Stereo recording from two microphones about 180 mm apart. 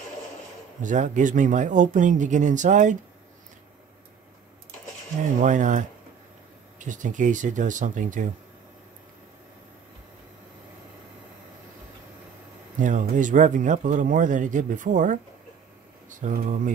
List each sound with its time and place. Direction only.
0.8 s speech: 45° right (ahead or behind)
5.4 s speech: 45° right (ahead or behind)
12.7 s speech: 45° right (ahead or behind)